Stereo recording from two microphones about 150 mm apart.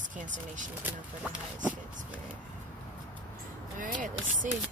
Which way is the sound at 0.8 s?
5° right (ahead or behind).